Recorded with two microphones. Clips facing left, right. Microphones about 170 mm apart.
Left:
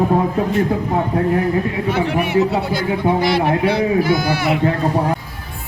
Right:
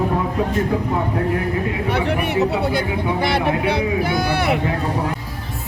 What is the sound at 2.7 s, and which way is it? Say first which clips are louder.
A man's voice: left 3 dB; 60° right (ahead or behind).